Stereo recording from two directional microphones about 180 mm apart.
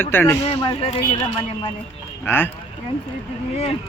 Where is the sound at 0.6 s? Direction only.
30° left (ahead or behind).